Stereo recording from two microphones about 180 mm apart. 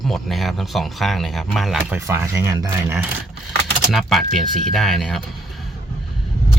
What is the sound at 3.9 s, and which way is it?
Speech, centre (ahead or behind).